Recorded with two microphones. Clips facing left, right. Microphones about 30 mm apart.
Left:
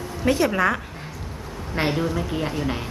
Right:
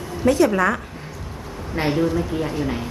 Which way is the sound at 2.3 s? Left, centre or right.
Left.